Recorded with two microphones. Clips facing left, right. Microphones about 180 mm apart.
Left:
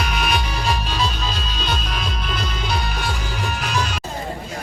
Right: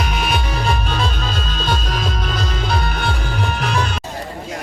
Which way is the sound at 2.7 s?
55° right (ahead or behind).